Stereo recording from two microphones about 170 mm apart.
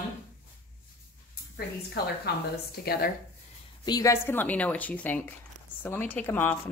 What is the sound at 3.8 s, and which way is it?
Speech, 20° left (ahead or behind).